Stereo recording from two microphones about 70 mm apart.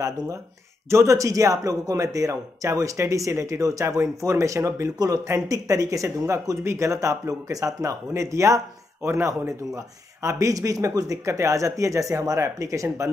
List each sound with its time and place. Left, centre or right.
0.8 s a man's voice: right
4.9 s speech: right
5.5 s a man's voice: right